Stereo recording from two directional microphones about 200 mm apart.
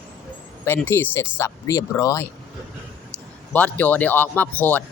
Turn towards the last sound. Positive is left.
turn(degrees=10)  # may be behind; listen again after turning